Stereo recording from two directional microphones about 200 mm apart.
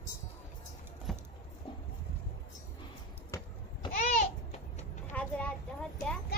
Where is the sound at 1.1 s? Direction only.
Centre (ahead or behind).